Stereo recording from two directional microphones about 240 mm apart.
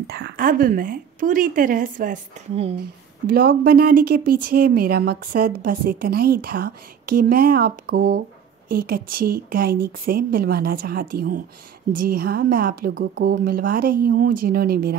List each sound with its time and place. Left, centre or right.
0.0 s a woman's voice: right
3.3 s a woman's voice: right